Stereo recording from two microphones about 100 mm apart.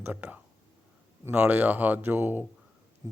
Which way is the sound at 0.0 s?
15° right (ahead or behind).